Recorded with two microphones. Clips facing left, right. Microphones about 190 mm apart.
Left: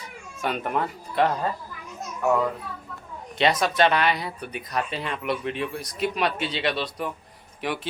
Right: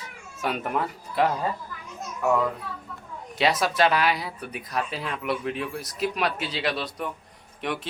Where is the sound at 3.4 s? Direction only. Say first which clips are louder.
Left 1 dB; 5° right (ahead or behind).